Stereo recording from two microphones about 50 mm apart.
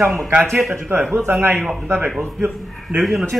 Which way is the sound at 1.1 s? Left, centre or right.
Right.